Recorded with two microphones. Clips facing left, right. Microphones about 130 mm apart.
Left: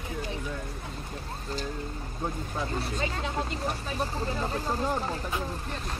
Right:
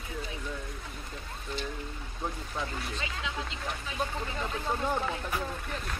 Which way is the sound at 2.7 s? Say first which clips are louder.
Left 6 dB; 35° left (ahead or behind).